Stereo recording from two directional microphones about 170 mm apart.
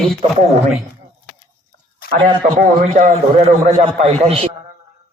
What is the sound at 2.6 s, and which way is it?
Speech, 55° right (ahead or behind).